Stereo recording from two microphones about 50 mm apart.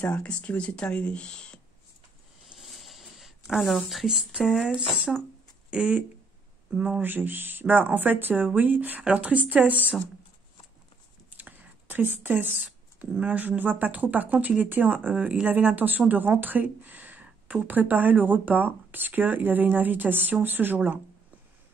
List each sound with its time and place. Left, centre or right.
0.0 s speech: left
2.4 s a sound: centre
5.7 s speech: right
7.0 s speech: right
11.2 s whispering: right
12.1 s speech: right